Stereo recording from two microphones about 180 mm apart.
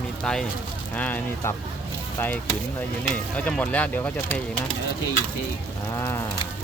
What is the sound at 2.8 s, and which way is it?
Speech, 10° left (ahead or behind).